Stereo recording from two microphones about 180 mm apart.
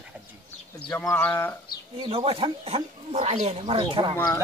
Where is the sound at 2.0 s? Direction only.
30° right (ahead or behind).